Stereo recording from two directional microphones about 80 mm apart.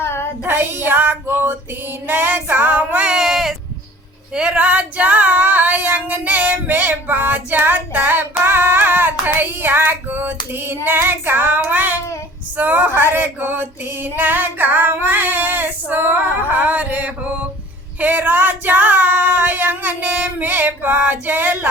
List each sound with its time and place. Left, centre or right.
0.0 s child singing: left
0.4 s child singing: right
0.9 s female singing: right